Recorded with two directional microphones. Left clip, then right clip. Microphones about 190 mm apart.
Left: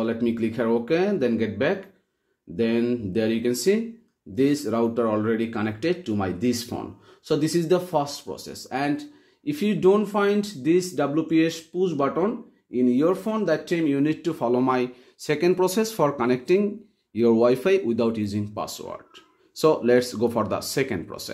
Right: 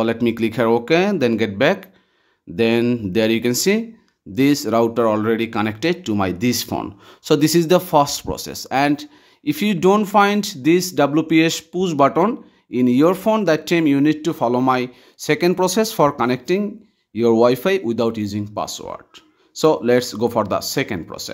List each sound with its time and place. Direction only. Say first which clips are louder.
0.0 s speech: right 6 dB; 35° right (ahead or behind); by 21.3 s 15° right (ahead or behind)